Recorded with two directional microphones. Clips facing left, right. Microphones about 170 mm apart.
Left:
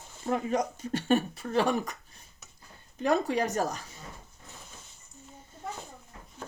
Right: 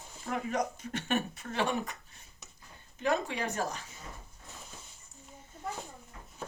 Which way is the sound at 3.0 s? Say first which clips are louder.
Left 5 dB; 40° left (ahead or behind).